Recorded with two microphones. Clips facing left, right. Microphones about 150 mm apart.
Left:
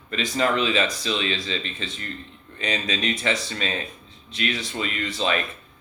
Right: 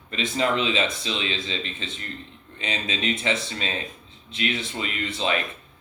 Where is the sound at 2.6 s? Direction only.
25° right (ahead or behind).